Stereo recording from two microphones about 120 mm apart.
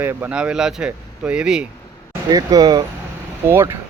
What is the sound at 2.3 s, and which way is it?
Speech, 30° right (ahead or behind).